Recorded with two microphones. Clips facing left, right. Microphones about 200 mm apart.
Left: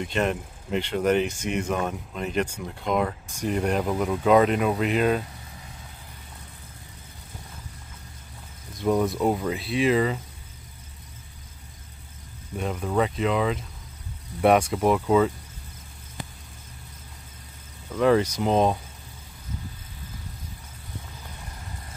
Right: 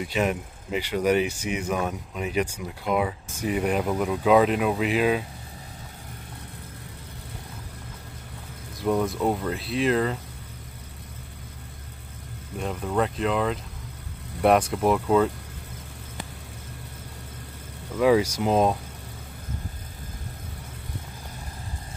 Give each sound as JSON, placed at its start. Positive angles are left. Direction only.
{"t": 0.0, "sound": "speech", "side_deg": -5}
{"t": 8.7, "sound": "speech", "side_deg": 0}
{"t": 12.5, "sound": "speech", "side_deg": 0}
{"t": 17.9, "sound": "speech", "side_deg": -5}